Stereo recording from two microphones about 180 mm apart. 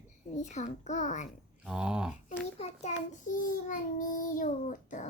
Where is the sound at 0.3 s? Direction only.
40° left (ahead or behind).